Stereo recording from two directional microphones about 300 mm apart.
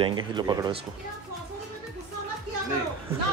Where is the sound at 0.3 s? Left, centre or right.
Centre.